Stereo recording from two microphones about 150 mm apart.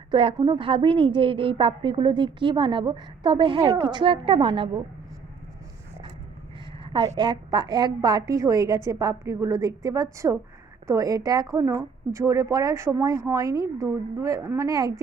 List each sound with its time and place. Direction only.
0.1 s a woman's voice: 35° right (ahead or behind)
6.8 s a sound: 35° right (ahead or behind)
7.2 s speech: 30° right (ahead or behind)